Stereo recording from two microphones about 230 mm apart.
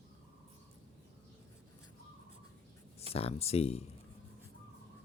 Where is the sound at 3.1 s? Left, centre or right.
Left.